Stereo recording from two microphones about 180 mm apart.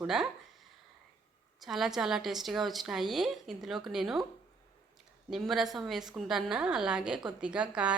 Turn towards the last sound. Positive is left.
turn(degrees=-5)  # may be behind; listen again after turning